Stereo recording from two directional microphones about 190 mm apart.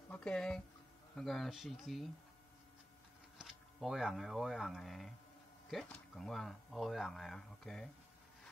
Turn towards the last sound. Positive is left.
turn(degrees=5)  # may be behind; listen again after turning